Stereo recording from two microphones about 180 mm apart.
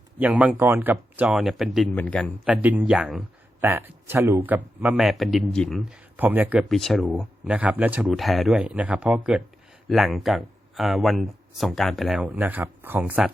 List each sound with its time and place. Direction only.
0.2 s speech: 5° right (ahead or behind)
6.1 s speech: 10° right (ahead or behind)